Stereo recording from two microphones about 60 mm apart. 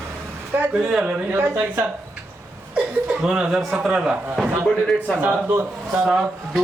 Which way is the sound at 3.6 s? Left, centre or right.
Centre.